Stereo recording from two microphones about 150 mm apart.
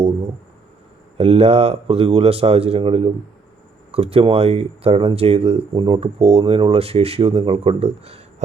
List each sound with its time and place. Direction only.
1.2 s speech: 40° right (ahead or behind)